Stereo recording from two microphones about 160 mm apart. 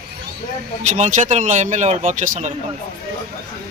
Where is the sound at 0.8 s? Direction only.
45° right (ahead or behind).